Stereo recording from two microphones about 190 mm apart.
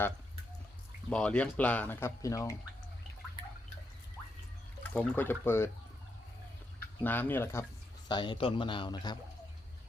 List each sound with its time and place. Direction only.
1.1 s speech: 5° left (ahead or behind)
4.8 s speech: 10° left (ahead or behind)
6.7 s speech: 10° left (ahead or behind)
8.0 s speech: 25° left (ahead or behind)